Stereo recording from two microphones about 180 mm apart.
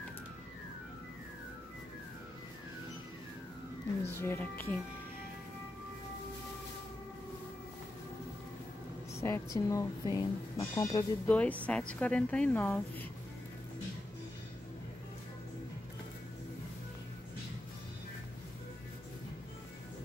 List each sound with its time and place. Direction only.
4.2 s speech: 10° left (ahead or behind)
9.2 s speech: 20° left (ahead or behind)
11.2 s speech: 10° left (ahead or behind)